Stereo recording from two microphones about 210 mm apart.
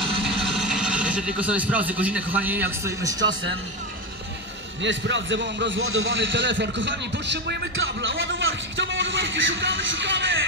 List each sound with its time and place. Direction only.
0.2 s speech: centre (ahead or behind)
4.8 s a man's voice: 60° right (ahead or behind)